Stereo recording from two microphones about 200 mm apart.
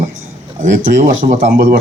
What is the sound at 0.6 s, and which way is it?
Speech, 40° right (ahead or behind).